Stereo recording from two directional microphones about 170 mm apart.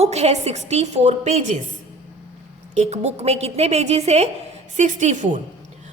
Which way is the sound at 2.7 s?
40° right (ahead or behind).